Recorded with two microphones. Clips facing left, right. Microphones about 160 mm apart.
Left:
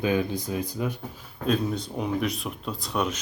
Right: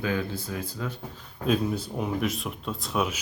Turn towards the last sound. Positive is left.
turn(degrees=-5)  # may be behind; listen again after turning